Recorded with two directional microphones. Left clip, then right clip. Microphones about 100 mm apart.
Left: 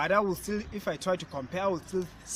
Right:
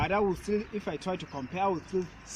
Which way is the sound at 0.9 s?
40° left (ahead or behind).